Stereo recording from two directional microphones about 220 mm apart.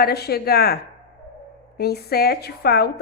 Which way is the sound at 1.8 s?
45° left (ahead or behind).